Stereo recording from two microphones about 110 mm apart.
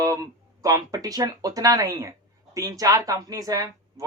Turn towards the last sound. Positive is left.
turn(degrees=-30)  # may be behind; listen again after turning